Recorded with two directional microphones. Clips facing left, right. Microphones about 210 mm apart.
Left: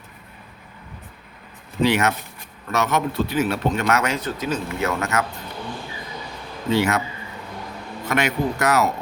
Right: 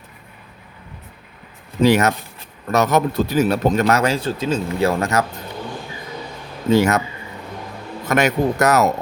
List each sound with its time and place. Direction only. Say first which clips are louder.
1.8 s a man's voice: right 4 dB; 40° right (ahead or behind)
6.7 s speech: right 5 dB; 40° right (ahead or behind)
8.0 s speech: right 5 dB; 40° right (ahead or behind)